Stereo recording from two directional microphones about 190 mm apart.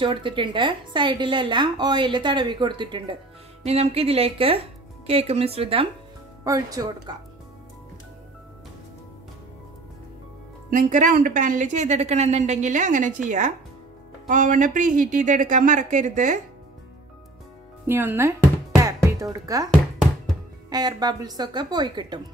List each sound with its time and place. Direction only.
0.0 s a woman's voice: 25° right (ahead or behind)
6.4 s a woman's voice: 20° right (ahead or behind)
10.7 s a woman's voice: 40° right (ahead or behind)
17.8 s speech: 10° right (ahead or behind)
18.8 s music: 15° right (ahead or behind)
20.7 s a woman's voice: 20° right (ahead or behind)